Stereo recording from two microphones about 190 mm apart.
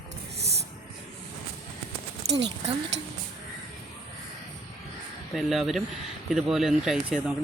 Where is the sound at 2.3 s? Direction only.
15° right (ahead or behind).